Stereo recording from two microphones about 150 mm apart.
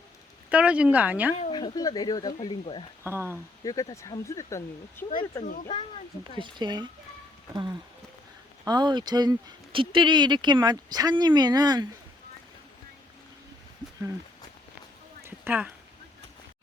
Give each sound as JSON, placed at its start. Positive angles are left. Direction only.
{"t": 0.5, "sound": "a woman's voice", "side_deg": -10}
{"t": 1.5, "sound": "speech", "side_deg": 30}
{"t": 3.0, "sound": "a woman's voice", "side_deg": -15}
{"t": 3.6, "sound": "speech", "side_deg": 25}
{"t": 5.5, "sound": "speech", "side_deg": 50}
{"t": 6.3, "sound": "speech", "side_deg": -30}
{"t": 15.2, "sound": "a sound", "side_deg": -10}